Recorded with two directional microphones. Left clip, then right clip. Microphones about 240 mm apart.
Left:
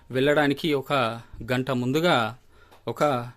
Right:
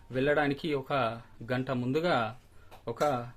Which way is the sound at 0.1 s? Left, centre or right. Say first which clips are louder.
Left 6 dB; left.